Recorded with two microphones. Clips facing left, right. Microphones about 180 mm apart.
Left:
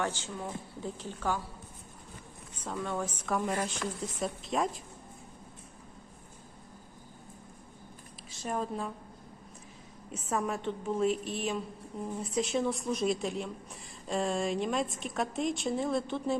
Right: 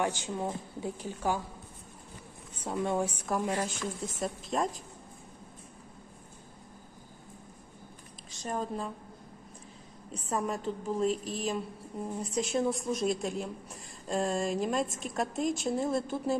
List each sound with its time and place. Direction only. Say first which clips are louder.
0.0 s a woman's voice: right 3 dB; 15° right (ahead or behind)
2.6 s a woman's voice: right 4 dB; 20° right (ahead or behind); by 4.8 s centre (ahead or behind)
8.4 s a woman's voice: even; centre (ahead or behind)
10.2 s a woman's voice: even; centre (ahead or behind)